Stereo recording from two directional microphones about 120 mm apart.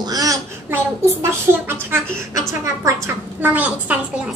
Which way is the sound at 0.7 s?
20° right (ahead or behind).